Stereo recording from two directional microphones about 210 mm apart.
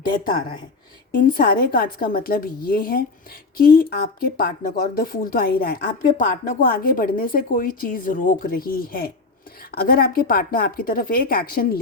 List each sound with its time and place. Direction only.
0.0 s speech: 45° left (ahead or behind)